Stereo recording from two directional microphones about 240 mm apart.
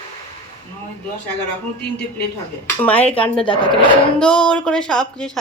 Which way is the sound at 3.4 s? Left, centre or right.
Left.